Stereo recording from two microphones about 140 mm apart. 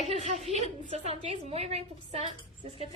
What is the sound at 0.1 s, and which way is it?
A woman's voice, 50° right (ahead or behind).